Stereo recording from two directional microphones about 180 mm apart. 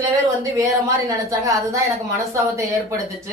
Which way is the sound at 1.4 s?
15° right (ahead or behind).